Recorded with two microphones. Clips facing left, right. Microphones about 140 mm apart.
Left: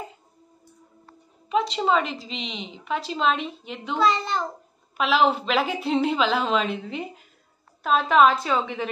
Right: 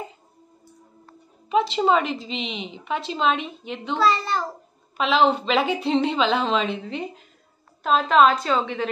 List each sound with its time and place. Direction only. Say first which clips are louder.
1.5 s a woman's voice: right 2 dB; centre (ahead or behind)
4.0 s a child's voice: right 1 dB; 20° left (ahead or behind)
4.9 s a woman's voice: right 1 dB; 5° left (ahead or behind)